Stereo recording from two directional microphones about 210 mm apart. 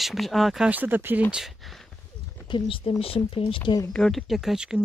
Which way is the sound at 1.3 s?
Centre (ahead or behind).